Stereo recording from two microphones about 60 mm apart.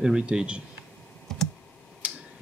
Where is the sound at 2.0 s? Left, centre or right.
Right.